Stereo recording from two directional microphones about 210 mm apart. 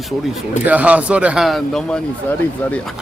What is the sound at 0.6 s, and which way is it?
Speech, 5° right (ahead or behind).